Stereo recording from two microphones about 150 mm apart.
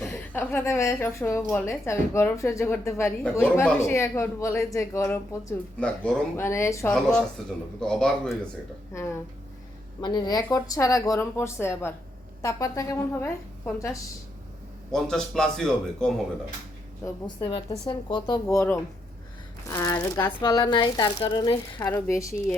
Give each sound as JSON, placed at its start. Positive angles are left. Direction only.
{"t": 0.3, "sound": "speech", "side_deg": 15}
{"t": 6.9, "sound": "a man's voice", "side_deg": 5}
{"t": 10.0, "sound": "a woman's voice", "side_deg": 30}
{"t": 14.9, "sound": "a man's voice", "side_deg": 5}
{"t": 17.2, "sound": "a woman's voice", "side_deg": 35}
{"t": 18.5, "sound": "a woman's voice", "side_deg": 20}